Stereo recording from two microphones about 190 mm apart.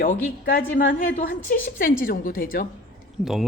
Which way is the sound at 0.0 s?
45° left (ahead or behind).